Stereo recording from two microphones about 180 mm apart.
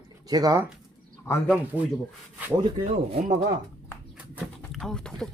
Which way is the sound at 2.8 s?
40° right (ahead or behind).